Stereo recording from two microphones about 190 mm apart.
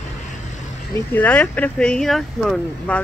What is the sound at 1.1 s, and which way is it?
Speech, 10° left (ahead or behind).